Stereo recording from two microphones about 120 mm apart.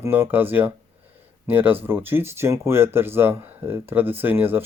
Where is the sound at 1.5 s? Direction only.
15° right (ahead or behind).